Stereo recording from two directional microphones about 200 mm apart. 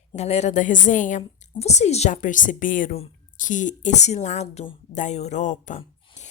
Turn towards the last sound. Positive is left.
turn(degrees=35)  # may be behind; listen again after turning